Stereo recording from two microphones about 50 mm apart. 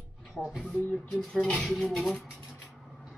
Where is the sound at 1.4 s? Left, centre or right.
Centre.